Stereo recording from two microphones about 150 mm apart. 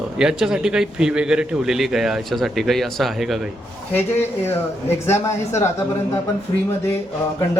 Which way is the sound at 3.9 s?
15° left (ahead or behind).